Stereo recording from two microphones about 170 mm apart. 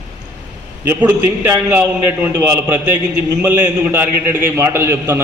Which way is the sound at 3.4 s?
15° right (ahead or behind).